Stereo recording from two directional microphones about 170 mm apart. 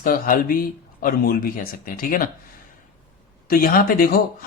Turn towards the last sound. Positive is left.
turn(degrees=60)  # may be behind; listen again after turning